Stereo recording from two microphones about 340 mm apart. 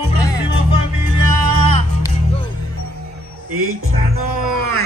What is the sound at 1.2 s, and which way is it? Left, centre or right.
Music, right.